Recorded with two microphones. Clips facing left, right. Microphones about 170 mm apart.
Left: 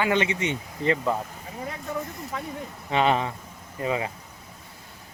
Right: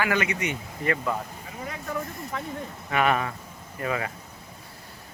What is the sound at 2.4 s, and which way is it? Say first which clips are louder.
Speech: right 1 dB; 15° left (ahead or behind).